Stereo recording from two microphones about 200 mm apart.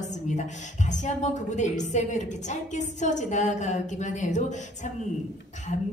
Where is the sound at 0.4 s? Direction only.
35° left (ahead or behind).